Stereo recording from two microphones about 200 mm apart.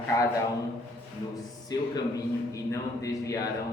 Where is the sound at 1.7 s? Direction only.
20° left (ahead or behind).